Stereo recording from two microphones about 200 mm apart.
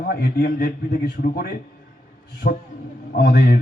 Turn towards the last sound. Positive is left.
turn(degrees=50)  # may be behind; listen again after turning